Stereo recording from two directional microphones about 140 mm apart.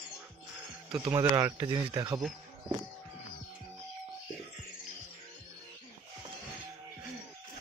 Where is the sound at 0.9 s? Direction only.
30° right (ahead or behind).